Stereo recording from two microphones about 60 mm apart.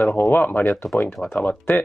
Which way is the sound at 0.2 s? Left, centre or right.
Left.